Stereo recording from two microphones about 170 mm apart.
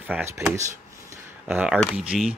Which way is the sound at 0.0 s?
10° right (ahead or behind).